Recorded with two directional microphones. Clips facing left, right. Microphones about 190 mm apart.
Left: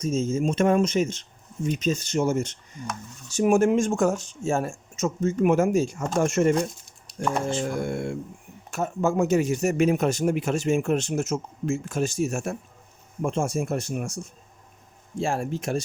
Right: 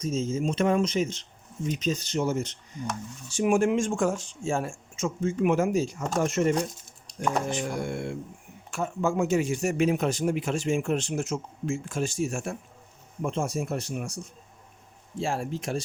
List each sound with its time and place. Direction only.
0.0 s speech: 45° left (ahead or behind)
7.6 s speech: 50° left (ahead or behind)
15.2 s speech: 45° left (ahead or behind)